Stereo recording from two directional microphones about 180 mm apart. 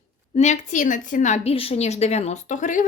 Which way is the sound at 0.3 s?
40° left (ahead or behind).